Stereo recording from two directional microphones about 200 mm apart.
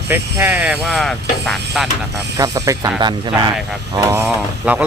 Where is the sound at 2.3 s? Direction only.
15° right (ahead or behind).